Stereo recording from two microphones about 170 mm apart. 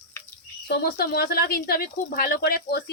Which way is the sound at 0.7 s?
65° left (ahead or behind).